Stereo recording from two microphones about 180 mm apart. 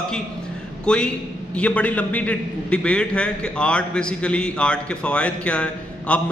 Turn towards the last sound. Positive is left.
turn(degrees=5)  # may be behind; listen again after turning